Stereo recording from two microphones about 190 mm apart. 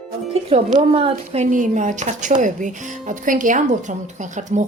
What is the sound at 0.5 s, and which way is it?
A woman's voice, 35° right (ahead or behind).